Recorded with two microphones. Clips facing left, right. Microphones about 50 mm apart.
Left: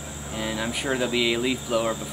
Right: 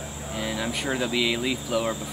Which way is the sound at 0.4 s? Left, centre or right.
Centre.